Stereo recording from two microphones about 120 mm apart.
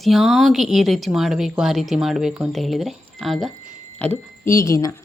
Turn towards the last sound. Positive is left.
turn(degrees=25)  # may be behind; listen again after turning